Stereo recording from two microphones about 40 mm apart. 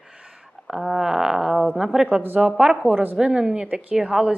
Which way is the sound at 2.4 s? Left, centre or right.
Right.